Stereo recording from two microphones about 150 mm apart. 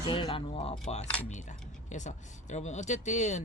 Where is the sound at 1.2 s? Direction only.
55° left (ahead or behind).